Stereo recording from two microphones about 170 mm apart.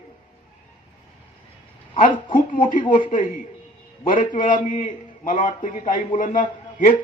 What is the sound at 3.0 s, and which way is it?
A man's voice, 50° left (ahead or behind).